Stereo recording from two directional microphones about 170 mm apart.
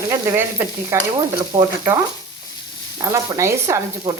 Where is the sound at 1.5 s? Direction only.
35° right (ahead or behind).